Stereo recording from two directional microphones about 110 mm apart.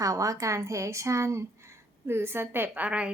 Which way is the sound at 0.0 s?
30° right (ahead or behind).